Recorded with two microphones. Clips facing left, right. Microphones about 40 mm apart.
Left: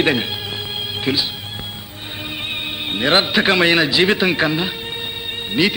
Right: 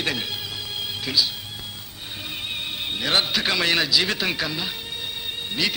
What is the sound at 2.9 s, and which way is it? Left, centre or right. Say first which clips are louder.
A man's voice: left 7 dB; left.